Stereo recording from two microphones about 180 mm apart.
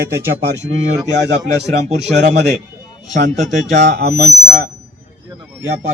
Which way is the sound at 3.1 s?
40° right (ahead or behind).